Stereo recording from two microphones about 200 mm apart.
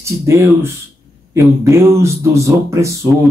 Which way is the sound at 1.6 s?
15° right (ahead or behind).